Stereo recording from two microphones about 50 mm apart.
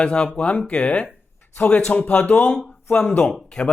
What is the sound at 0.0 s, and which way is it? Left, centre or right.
A man's voice, left.